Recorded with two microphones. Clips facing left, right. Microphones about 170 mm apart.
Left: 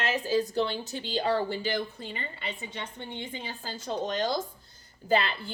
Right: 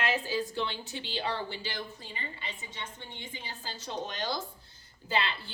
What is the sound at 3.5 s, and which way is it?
Speech, 50° left (ahead or behind).